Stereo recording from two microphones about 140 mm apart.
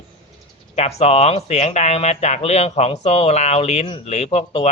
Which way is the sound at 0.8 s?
50° left (ahead or behind).